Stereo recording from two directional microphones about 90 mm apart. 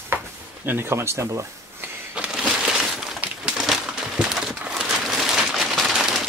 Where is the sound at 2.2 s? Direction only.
10° right (ahead or behind).